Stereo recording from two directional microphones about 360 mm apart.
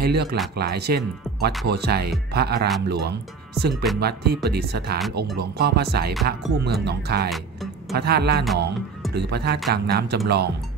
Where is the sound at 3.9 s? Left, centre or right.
Centre.